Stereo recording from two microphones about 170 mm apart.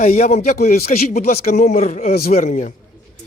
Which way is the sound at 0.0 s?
45° left (ahead or behind).